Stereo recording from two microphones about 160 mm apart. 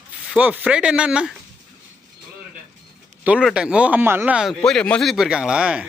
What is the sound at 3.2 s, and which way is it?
Speech, 5° right (ahead or behind).